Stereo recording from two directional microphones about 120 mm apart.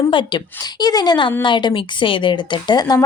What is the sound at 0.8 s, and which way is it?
A woman's voice, 35° left (ahead or behind).